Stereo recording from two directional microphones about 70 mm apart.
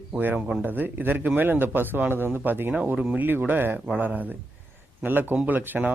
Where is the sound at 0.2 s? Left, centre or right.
Right.